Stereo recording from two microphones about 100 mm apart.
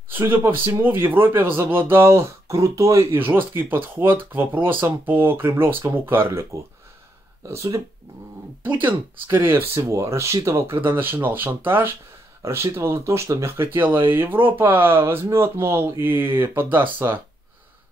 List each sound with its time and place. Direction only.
0.1 s speech: 20° right (ahead or behind)
8.6 s speech: 20° right (ahead or behind)